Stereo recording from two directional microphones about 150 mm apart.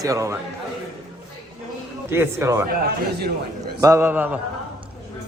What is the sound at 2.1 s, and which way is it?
Speech, 15° right (ahead or behind).